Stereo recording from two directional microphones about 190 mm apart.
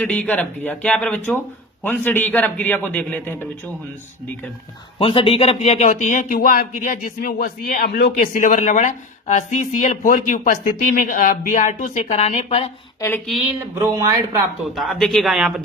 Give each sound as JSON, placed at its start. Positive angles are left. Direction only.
{"t": 0.0, "sound": "a man's voice", "side_deg": 5}
{"t": 4.9, "sound": "a man's voice", "side_deg": 30}
{"t": 13.0, "sound": "a man's voice", "side_deg": 10}
{"t": 13.7, "sound": "speech", "side_deg": -15}
{"t": 14.8, "sound": "speech", "side_deg": 0}